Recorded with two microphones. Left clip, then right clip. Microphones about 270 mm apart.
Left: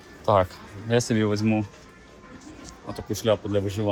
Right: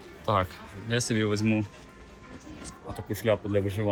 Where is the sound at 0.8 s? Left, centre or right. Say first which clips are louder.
Left 5 dB; left.